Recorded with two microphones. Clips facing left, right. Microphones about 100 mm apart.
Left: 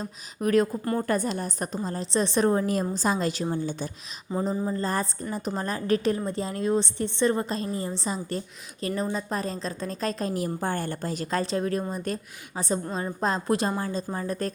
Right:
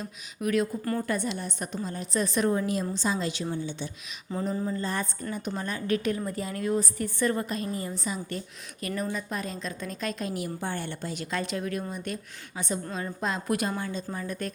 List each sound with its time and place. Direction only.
0.0 s a woman's voice: 40° left (ahead or behind)
4.4 s a woman's voice: 30° left (ahead or behind)